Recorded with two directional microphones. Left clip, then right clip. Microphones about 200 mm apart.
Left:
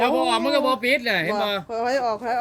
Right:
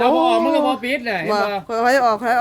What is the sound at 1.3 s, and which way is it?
Speech, 30° right (ahead or behind).